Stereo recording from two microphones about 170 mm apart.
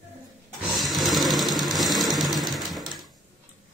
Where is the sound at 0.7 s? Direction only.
Centre (ahead or behind).